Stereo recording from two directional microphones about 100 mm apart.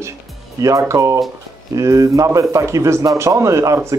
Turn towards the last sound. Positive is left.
turn(degrees=-35)  # may be behind; listen again after turning